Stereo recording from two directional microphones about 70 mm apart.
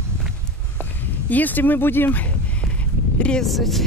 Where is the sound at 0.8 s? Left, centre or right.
Left.